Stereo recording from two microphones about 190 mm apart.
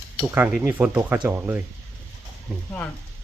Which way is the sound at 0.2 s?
5° right (ahead or behind).